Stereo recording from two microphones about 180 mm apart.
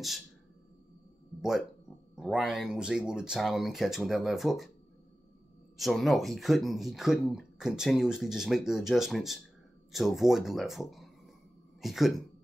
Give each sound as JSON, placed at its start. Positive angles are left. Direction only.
{"t": 2.1, "sound": "speech", "side_deg": -5}
{"t": 5.8, "sound": "speech", "side_deg": 0}